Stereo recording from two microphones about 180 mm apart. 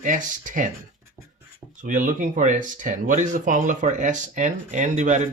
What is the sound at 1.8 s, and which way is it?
Speech, 45° right (ahead or behind).